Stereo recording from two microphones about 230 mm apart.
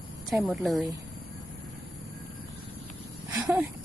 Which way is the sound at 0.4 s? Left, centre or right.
Centre.